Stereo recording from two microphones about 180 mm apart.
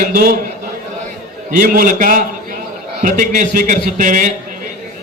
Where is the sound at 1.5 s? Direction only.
50° right (ahead or behind).